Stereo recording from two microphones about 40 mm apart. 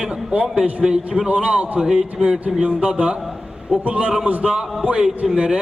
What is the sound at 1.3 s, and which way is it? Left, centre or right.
Speech, right.